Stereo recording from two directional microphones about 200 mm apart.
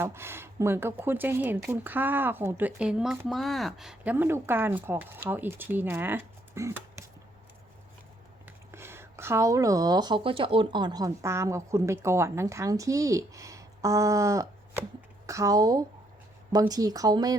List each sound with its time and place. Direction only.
0.0 s speech: 10° right (ahead or behind)
8.4 s speech: 10° right (ahead or behind)